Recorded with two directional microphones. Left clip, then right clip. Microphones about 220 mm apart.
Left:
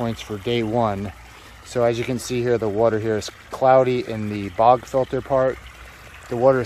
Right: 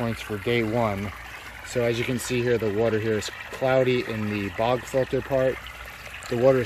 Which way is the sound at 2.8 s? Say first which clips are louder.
Left 4 dB; 30° left (ahead or behind).